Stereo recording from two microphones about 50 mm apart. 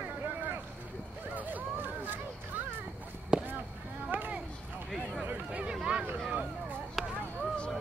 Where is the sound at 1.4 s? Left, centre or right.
Right.